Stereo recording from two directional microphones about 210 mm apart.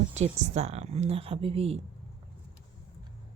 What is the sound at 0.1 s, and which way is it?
A woman's voice, 30° right (ahead or behind).